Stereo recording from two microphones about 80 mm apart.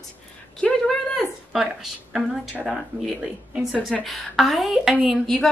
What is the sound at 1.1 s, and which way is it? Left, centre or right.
A woman's voice, centre.